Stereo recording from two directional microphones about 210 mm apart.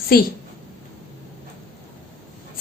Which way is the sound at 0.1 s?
45° left (ahead or behind).